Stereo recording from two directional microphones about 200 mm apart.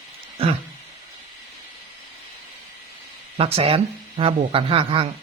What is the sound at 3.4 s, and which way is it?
Speech, 30° right (ahead or behind).